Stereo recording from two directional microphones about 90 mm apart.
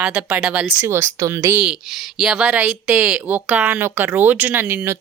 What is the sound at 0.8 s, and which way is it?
Speech, 30° right (ahead or behind).